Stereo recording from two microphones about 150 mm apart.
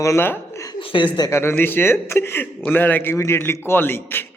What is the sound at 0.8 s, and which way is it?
Speech, 35° left (ahead or behind).